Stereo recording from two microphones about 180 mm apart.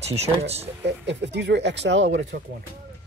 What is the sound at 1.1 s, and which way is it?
Speech, 75° right (ahead or behind).